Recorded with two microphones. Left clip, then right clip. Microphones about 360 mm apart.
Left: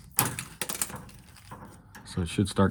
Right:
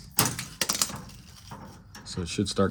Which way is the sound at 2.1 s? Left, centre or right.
Centre.